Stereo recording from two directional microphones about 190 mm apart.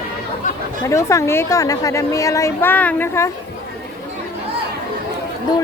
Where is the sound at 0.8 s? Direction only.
15° left (ahead or behind).